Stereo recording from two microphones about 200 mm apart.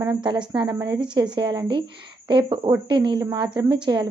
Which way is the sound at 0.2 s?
25° right (ahead or behind).